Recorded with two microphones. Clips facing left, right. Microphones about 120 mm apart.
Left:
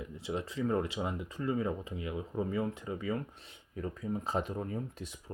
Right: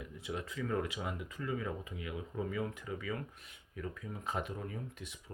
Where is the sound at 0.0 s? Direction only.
25° left (ahead or behind).